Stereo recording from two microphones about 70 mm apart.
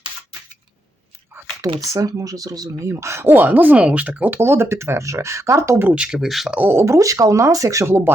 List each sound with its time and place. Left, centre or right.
1.6 s speech: right
2.8 s speech: right
4.4 s speech: right
5.9 s speech: centre
6.1 s speech: centre
6.7 s speech: right